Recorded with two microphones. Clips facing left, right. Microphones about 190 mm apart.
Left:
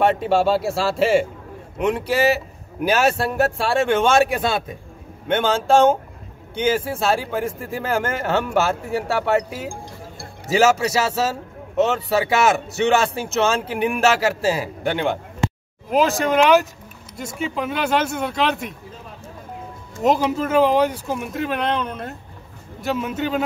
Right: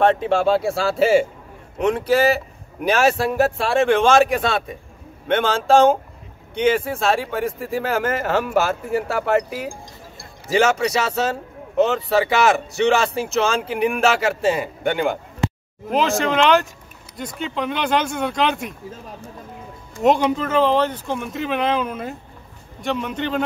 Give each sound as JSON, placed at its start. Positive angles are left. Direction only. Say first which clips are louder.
{"t": 0.0, "sound": "speech", "louder": "right 1 dB", "side_deg": 5}
{"t": 20.0, "sound": "speech", "louder": "right 1 dB", "side_deg": 0}